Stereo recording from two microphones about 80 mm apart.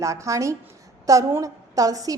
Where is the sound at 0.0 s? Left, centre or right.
Right.